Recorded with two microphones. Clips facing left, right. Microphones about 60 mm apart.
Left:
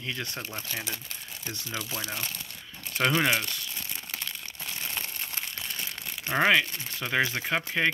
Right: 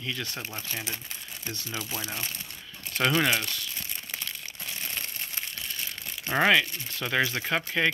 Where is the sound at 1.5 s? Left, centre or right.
Left.